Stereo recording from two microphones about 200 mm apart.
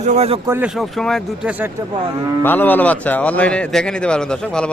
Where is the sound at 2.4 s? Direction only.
10° left (ahead or behind).